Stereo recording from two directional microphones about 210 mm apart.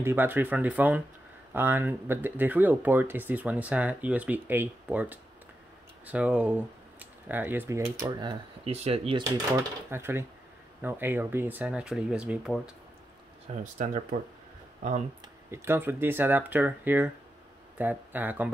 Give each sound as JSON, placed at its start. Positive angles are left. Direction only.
{"t": 0.0, "sound": "speech", "side_deg": -10}
{"t": 13.5, "sound": "speech", "side_deg": -30}
{"t": 15.5, "sound": "speech", "side_deg": -10}